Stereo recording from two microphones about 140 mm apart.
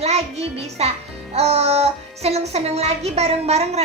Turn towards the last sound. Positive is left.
turn(degrees=-50)  # may be behind; listen again after turning